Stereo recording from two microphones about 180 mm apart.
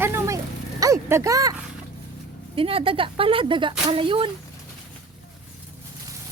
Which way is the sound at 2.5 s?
30° right (ahead or behind).